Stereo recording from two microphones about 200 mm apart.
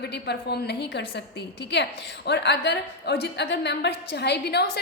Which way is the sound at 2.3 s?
55° left (ahead or behind).